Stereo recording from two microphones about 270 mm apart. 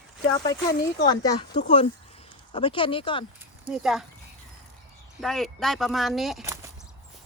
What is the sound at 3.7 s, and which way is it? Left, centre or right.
Speech, centre.